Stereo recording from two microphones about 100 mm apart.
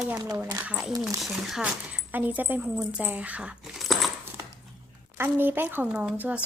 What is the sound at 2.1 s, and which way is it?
Speech, 20° right (ahead or behind).